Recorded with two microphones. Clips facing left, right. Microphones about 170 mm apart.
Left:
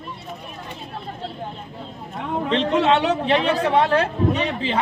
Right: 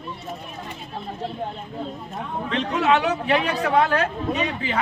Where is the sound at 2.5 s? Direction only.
25° left (ahead or behind).